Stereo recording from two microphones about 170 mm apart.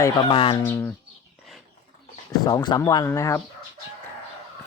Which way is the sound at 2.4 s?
25° left (ahead or behind).